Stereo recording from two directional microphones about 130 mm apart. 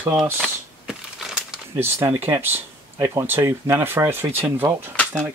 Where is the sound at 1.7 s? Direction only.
20° right (ahead or behind).